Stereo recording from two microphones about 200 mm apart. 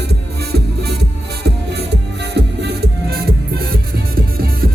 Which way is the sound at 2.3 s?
55° right (ahead or behind).